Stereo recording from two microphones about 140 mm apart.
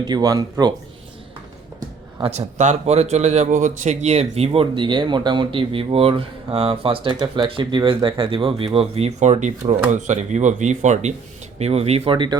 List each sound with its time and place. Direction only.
0.1 s speech: 30° right (ahead or behind)
2.3 s speech: 55° right (ahead or behind); by 12.4 s 35° right (ahead or behind)